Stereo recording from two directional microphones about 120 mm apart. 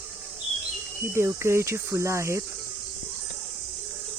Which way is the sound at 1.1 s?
20° right (ahead or behind).